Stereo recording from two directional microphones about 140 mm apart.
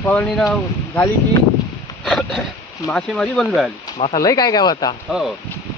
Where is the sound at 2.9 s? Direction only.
5° left (ahead or behind).